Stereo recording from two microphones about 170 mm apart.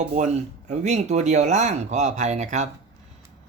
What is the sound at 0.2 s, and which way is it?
Speech, 45° right (ahead or behind).